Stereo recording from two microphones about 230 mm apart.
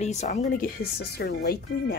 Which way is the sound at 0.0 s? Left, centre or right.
Left.